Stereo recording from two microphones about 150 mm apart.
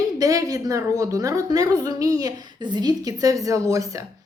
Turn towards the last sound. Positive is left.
turn(degrees=-20)  # may be behind; listen again after turning